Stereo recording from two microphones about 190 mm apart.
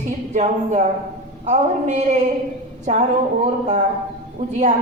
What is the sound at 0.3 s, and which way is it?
A man's voice, 40° right (ahead or behind).